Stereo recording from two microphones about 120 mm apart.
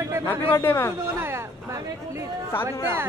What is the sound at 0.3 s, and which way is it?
Speech, 15° left (ahead or behind).